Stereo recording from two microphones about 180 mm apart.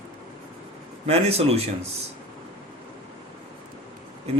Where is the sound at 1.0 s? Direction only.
35° right (ahead or behind).